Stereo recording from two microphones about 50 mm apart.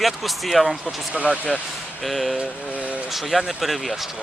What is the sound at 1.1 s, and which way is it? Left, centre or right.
Speech, right.